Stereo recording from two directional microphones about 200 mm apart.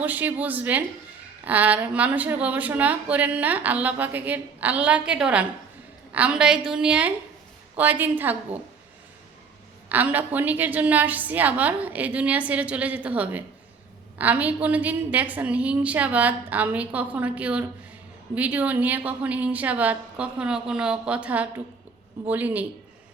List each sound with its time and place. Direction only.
0.0 s a woman's voice: 10° right (ahead or behind)
9.9 s a woman's voice: 10° right (ahead or behind)